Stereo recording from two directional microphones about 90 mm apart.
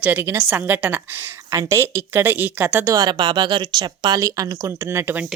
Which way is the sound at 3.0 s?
60° right (ahead or behind).